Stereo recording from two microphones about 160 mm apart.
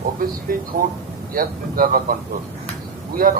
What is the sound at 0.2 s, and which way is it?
Speech, 60° right (ahead or behind).